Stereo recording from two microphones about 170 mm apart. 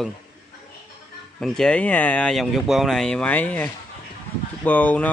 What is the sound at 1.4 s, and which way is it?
A man's voice, 5° left (ahead or behind).